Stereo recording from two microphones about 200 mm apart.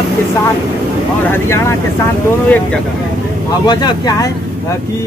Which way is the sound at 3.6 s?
20° left (ahead or behind).